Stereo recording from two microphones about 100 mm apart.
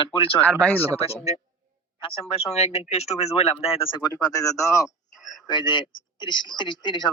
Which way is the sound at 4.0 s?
35° left (ahead or behind).